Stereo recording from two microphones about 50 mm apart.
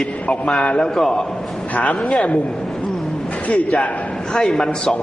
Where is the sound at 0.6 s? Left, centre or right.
Left.